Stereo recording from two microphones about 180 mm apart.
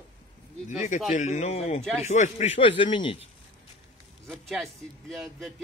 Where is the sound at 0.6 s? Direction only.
40° left (ahead or behind).